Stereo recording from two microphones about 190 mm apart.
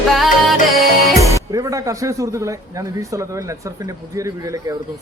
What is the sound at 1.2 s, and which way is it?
Speech, 20° right (ahead or behind).